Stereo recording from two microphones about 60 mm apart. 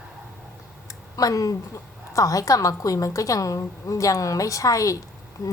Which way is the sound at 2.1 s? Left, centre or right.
Left.